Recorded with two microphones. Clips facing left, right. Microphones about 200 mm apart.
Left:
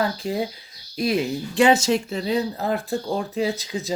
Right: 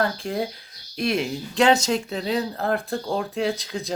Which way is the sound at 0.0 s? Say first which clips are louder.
Left 1 dB; 5° left (ahead or behind).